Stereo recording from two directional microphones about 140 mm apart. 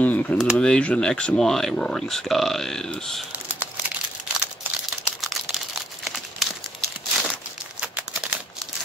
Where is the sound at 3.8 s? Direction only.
5° right (ahead or behind).